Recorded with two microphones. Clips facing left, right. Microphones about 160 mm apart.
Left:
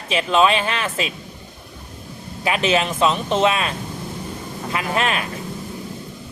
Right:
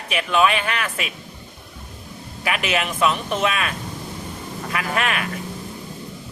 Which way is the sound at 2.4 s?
30° left (ahead or behind).